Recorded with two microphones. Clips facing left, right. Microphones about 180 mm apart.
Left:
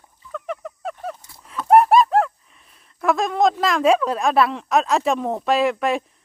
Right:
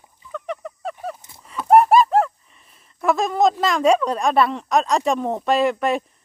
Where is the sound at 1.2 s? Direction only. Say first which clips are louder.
Even; 20° right (ahead or behind).